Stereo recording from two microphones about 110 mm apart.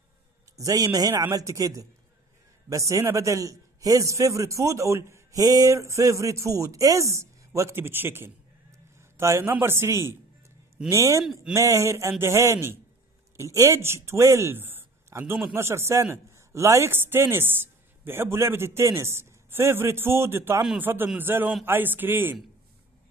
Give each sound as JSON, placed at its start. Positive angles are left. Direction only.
{"t": 0.6, "sound": "a man's voice", "side_deg": -30}